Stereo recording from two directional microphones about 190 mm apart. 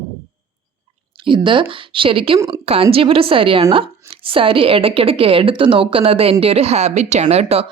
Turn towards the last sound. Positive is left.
turn(degrees=-30)  # may be behind; listen again after turning